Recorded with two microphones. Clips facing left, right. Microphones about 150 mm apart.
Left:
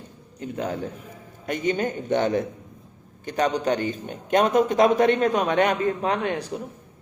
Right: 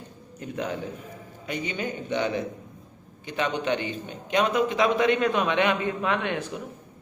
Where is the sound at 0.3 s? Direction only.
30° left (ahead or behind).